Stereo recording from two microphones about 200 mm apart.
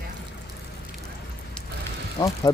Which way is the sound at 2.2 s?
20° left (ahead or behind).